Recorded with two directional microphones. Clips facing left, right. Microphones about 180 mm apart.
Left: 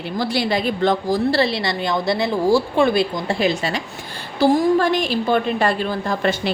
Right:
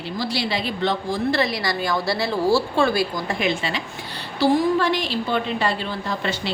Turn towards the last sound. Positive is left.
turn(degrees=50)  # may be behind; listen again after turning